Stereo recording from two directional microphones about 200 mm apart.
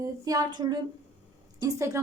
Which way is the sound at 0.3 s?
20° right (ahead or behind).